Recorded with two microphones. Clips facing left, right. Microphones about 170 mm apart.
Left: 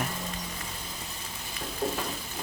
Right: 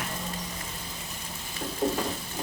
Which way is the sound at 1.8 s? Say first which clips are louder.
Right 3 dB; 20° right (ahead or behind).